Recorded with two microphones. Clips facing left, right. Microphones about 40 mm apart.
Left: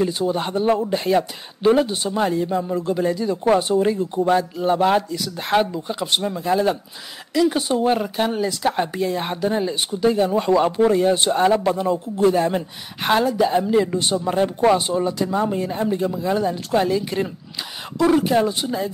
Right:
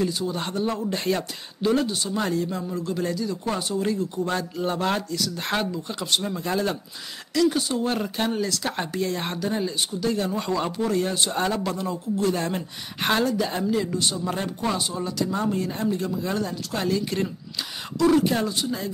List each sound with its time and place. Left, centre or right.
0.0 s speech: left
0.9 s speech: centre
1.6 s speech: left
4.3 s speech: centre
7.5 s speech: left
8.0 s speech: centre
9.4 s speech: left
16.2 s speech: centre
18.5 s speech: left